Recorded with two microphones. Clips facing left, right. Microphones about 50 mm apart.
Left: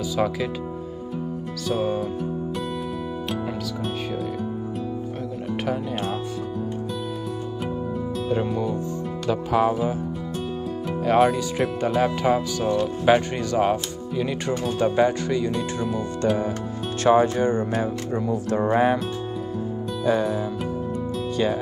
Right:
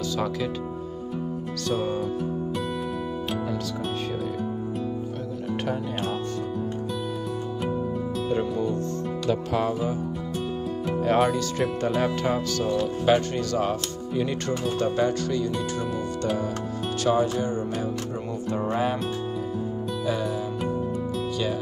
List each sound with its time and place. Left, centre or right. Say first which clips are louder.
9.3 s music: left 4 dB; centre
11.1 s speech: left 4 dB; centre
12.6 s speech: left 3 dB; centre
14.8 s speech: left 5 dB; centre
17.0 s speech: left 6 dB; left
18.5 s music: left 5 dB; left